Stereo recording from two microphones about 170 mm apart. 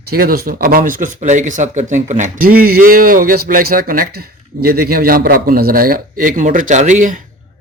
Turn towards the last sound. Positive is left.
turn(degrees=-50)  # may be behind; listen again after turning